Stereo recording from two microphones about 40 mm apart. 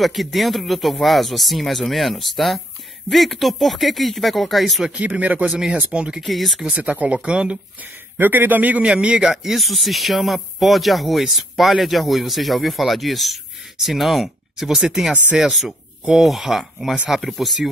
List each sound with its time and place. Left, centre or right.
0.0 s speech: centre
4.9 s speech: right
5.9 s a man's voice: right
6.2 s speech: centre
6.6 s a man's voice: right
8.2 s a man's voice: right
8.8 s a man's voice: right
9.3 s speech: centre